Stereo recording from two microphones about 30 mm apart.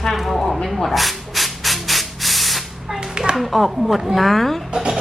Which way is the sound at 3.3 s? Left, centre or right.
Centre.